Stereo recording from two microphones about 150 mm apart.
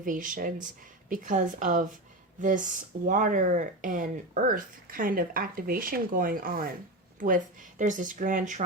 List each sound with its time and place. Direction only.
0.0 s speech: 60° right (ahead or behind)